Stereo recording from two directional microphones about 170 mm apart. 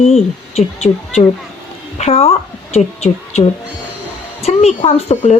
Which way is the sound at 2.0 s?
35° left (ahead or behind).